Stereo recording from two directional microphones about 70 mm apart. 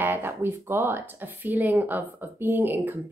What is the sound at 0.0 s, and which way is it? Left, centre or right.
Speech, right.